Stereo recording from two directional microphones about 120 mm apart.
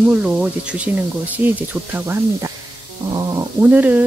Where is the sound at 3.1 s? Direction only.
30° right (ahead or behind).